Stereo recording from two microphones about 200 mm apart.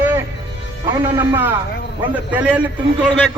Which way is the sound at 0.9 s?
15° right (ahead or behind).